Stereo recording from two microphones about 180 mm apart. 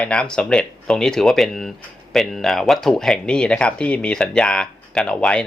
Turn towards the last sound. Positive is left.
turn(degrees=5)  # may be behind; listen again after turning